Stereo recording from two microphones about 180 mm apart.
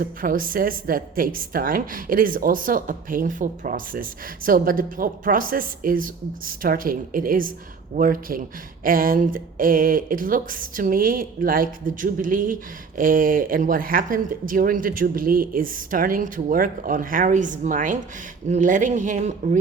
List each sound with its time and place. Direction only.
0.0 s a woman's voice: 50° right (ahead or behind)